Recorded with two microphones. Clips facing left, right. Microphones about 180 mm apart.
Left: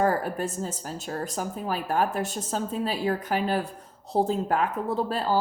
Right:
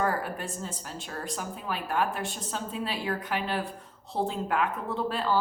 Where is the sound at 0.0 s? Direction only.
40° left (ahead or behind).